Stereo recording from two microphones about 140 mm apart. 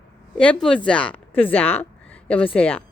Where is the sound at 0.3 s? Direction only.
10° left (ahead or behind).